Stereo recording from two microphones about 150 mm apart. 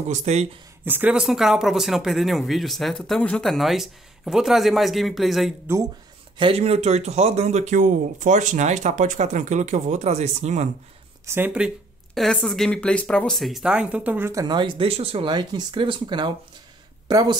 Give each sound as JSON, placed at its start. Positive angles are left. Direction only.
{"t": 0.1, "sound": "speech", "side_deg": -50}
{"t": 0.8, "sound": "speech", "side_deg": -10}
{"t": 5.7, "sound": "speech", "side_deg": -15}
{"t": 6.3, "sound": "speech", "side_deg": -40}
{"t": 11.2, "sound": "speech", "side_deg": -15}
{"t": 14.4, "sound": "speech", "side_deg": -30}